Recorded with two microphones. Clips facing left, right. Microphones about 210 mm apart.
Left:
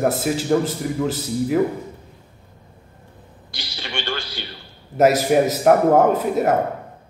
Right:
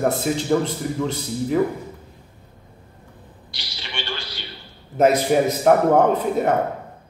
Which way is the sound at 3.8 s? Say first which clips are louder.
Left 4 dB; 45° left (ahead or behind).